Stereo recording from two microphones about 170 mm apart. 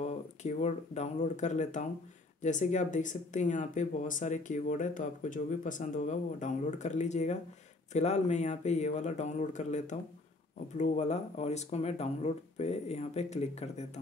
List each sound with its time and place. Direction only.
0.0 s speech: 40° left (ahead or behind)